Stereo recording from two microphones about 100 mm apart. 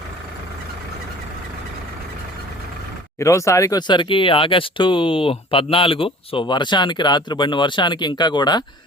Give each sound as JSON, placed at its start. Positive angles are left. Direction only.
{"t": 3.2, "sound": "speech", "side_deg": 30}